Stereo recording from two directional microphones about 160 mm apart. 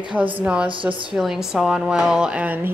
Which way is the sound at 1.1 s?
5° right (ahead or behind).